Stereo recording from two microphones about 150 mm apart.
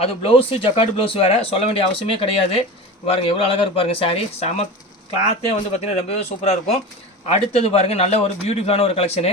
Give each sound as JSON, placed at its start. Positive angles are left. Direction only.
{"t": 0.0, "sound": "speech", "side_deg": 40}
{"t": 5.7, "sound": "a man's voice", "side_deg": 45}